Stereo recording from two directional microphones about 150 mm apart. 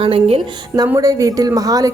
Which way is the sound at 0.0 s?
40° right (ahead or behind).